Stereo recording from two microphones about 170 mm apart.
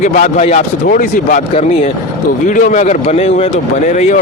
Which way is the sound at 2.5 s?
45° left (ahead or behind).